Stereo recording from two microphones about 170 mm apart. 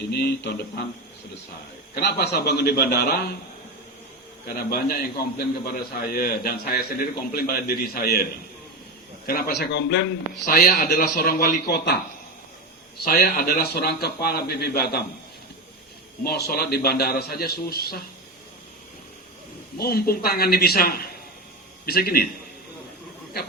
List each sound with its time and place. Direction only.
0.1 s a man's voice: 75° left (ahead or behind)
2.0 s a man's voice: 80° left
4.4 s a man's voice: 60° left (ahead or behind)
9.2 s a man's voice: 65° left (ahead or behind); by 10.4 s 90° left
10.4 s a man's voice: 60° left (ahead or behind)
13.1 s a man's voice: 60° left (ahead or behind)
16.2 s a man's voice: 65° left (ahead or behind)
19.8 s a man's voice: 65° left (ahead or behind)